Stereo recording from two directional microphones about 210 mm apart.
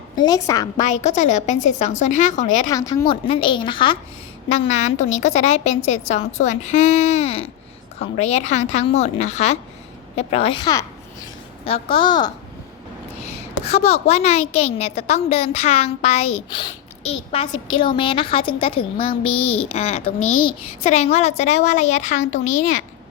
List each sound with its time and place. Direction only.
0.2 s a woman's voice: 15° left (ahead or behind)
0.8 s a woman's voice: 35° left (ahead or behind)
2.6 s a woman's voice: 15° left (ahead or behind)
13.2 s a woman's voice: 30° left (ahead or behind)